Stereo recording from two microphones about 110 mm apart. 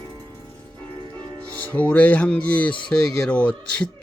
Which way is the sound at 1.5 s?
15° left (ahead or behind).